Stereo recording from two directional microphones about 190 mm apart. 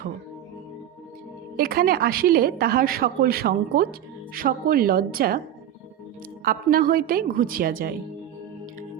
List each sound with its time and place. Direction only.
1.5 s a woman's voice: 50° right (ahead or behind)
6.4 s a woman's voice: 50° right (ahead or behind)